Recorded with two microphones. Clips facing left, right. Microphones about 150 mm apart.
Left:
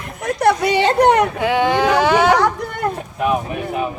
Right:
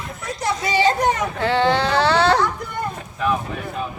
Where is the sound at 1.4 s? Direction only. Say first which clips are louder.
Left 2 dB; 15° left (ahead or behind).